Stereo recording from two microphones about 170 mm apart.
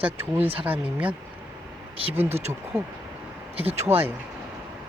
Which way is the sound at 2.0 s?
30° right (ahead or behind).